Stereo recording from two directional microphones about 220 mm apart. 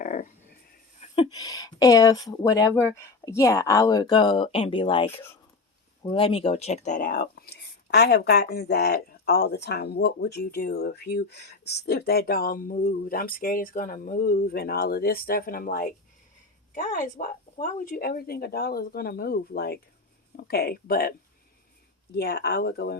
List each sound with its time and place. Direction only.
0.0 s a sound: 35° left (ahead or behind)
1.1 s speech: 20° left (ahead or behind); by 21.1 s 45° left (ahead or behind)
22.1 s speech: 45° left (ahead or behind)